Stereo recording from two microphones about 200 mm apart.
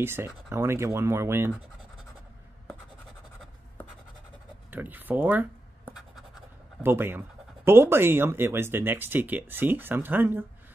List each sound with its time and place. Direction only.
0.0 s speech: 10° right (ahead or behind)
4.6 s speech: 10° right (ahead or behind)